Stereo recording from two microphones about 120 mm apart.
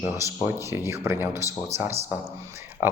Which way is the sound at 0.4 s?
20° right (ahead or behind).